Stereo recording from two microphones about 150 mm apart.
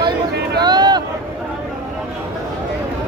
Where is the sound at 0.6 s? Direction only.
30° right (ahead or behind).